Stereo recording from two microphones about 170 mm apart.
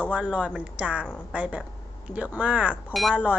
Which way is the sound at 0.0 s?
5° right (ahead or behind).